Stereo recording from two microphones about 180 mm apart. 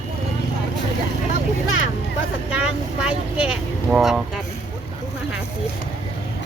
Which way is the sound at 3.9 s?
Centre (ahead or behind).